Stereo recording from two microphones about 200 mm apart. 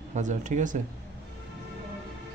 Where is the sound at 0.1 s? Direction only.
40° right (ahead or behind).